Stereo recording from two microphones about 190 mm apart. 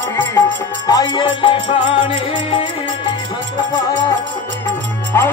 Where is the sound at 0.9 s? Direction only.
20° left (ahead or behind).